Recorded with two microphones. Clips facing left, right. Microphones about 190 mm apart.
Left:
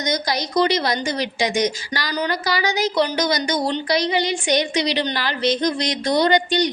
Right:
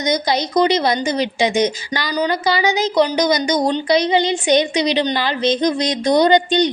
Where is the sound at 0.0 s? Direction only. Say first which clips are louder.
Right 5 dB; 20° right (ahead or behind).